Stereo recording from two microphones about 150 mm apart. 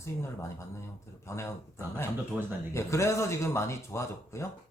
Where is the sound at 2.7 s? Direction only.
20° left (ahead or behind).